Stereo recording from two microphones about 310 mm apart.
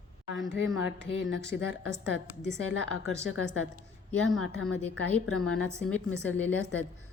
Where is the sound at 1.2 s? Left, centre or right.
Left.